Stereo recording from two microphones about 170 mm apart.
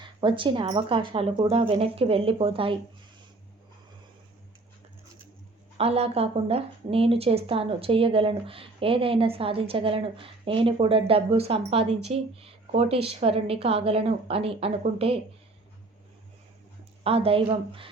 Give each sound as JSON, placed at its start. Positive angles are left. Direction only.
{"t": 0.0, "sound": "speech", "side_deg": -30}
{"t": 5.7, "sound": "speech", "side_deg": -35}
{"t": 17.0, "sound": "speech", "side_deg": -35}